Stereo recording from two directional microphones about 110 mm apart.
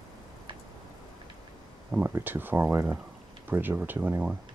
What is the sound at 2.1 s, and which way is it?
Speech, 20° right (ahead or behind).